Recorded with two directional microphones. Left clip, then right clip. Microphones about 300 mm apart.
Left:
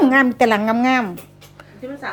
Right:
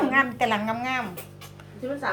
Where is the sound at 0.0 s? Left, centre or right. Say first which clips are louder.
Left 8 dB; centre.